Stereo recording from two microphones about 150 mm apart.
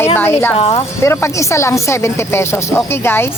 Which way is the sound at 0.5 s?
40° left (ahead or behind).